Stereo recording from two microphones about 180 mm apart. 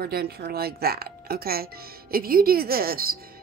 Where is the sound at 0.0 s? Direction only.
60° right (ahead or behind).